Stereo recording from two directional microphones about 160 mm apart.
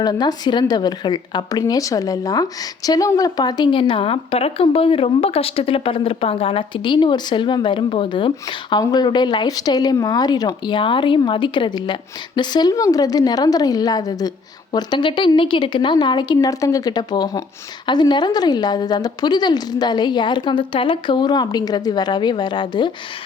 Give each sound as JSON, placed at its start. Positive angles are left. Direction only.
{"t": 0.0, "sound": "speech", "side_deg": 25}